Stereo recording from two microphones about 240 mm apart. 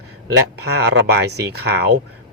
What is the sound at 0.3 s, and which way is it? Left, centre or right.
A man's voice, right.